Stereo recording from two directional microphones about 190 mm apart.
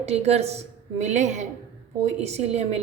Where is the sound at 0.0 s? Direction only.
35° right (ahead or behind).